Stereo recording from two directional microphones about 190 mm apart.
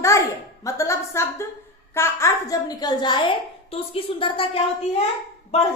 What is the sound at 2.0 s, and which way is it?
A woman's voice, 15° left (ahead or behind).